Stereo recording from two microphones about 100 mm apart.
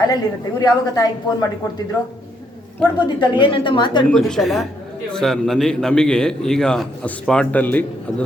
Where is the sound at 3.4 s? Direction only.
55° left (ahead or behind).